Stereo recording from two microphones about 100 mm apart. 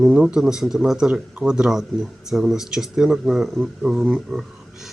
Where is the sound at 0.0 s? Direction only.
10° right (ahead or behind).